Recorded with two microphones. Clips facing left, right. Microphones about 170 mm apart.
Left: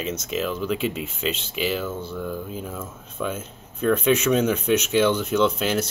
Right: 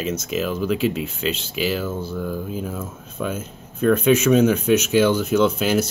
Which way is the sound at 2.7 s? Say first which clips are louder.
Right 3 dB; 35° right (ahead or behind).